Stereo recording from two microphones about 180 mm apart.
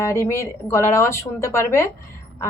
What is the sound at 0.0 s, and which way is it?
A woman's voice, 15° left (ahead or behind).